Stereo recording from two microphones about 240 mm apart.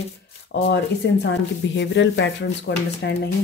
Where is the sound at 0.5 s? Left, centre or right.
Left.